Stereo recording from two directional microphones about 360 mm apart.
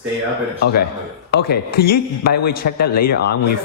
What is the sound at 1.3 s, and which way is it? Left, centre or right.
Speech, left.